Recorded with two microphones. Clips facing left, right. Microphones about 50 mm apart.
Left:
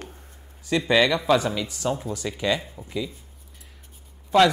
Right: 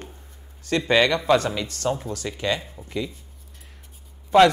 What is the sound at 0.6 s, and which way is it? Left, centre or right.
Speech, centre.